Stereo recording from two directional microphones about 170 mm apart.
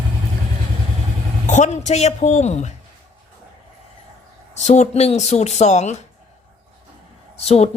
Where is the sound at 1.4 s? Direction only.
45° left (ahead or behind).